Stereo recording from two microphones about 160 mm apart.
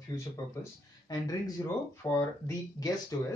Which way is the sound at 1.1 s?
25° left (ahead or behind).